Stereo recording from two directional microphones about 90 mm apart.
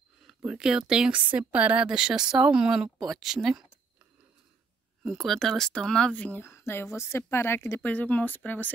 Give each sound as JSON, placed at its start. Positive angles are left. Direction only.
{"t": 0.4, "sound": "a woman's voice", "side_deg": -10}
{"t": 5.0, "sound": "speech", "side_deg": 0}
{"t": 7.8, "sound": "speech", "side_deg": 15}